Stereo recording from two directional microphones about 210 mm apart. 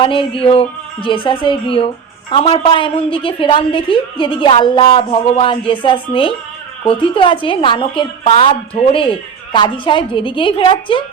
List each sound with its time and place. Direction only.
0.0 s a woman's voice: 25° left (ahead or behind)